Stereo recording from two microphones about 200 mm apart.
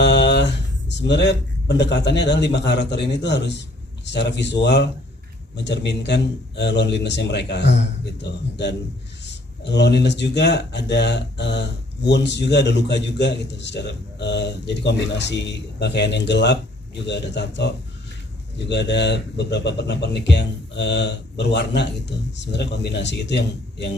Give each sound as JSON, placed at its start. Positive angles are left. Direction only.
{"t": 0.0, "sound": "speech", "side_deg": 60}